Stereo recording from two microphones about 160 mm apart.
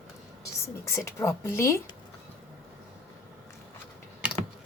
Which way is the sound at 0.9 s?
15° left (ahead or behind).